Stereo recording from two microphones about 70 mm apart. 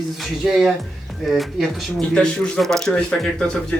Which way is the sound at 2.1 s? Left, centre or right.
Centre.